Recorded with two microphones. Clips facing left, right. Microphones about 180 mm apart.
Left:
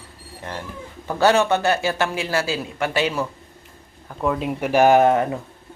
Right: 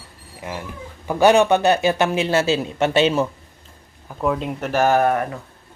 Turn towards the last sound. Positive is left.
turn(degrees=20)  # may be behind; listen again after turning